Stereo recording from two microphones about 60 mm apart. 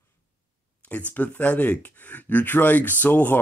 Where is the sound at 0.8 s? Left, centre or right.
Left.